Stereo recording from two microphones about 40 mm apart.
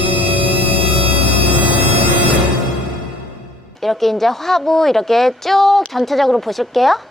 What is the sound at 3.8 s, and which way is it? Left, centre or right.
A woman's voice, centre.